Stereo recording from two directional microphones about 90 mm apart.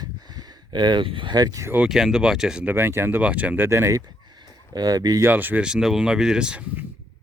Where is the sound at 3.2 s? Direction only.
15° right (ahead or behind).